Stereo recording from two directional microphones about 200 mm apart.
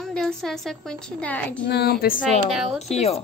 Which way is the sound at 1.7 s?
50° left (ahead or behind).